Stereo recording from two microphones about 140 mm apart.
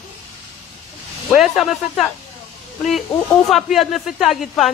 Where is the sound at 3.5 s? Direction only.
Centre (ahead or behind).